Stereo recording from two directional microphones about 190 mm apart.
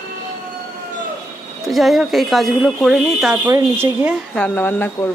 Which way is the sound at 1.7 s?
Centre (ahead or behind).